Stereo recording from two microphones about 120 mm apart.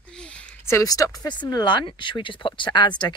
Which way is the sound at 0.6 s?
25° left (ahead or behind).